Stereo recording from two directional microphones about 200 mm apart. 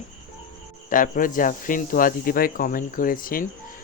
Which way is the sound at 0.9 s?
40° left (ahead or behind).